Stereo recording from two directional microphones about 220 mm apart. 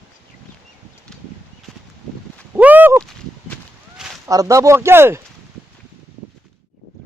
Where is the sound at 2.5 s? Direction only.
5° right (ahead or behind).